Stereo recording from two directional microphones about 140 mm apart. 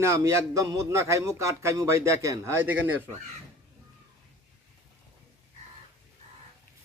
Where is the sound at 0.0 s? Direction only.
20° right (ahead or behind).